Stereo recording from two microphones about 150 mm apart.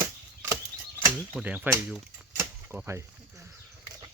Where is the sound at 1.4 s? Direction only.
10° right (ahead or behind).